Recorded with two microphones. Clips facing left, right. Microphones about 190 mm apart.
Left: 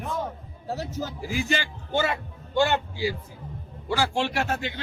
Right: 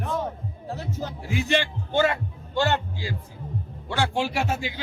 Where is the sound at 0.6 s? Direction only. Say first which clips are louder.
Left 1 dB; 40° left (ahead or behind).